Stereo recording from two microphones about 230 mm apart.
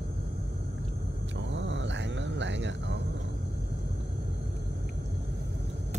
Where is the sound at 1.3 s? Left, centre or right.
Right.